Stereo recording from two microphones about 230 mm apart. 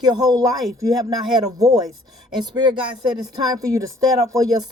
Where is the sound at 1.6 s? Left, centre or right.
Centre.